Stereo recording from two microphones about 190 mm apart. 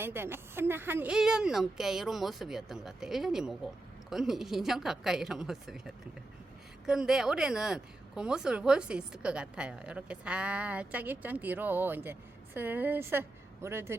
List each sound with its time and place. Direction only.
0.0 s speech: 10° right (ahead or behind)
6.8 s a woman's voice: 5° right (ahead or behind)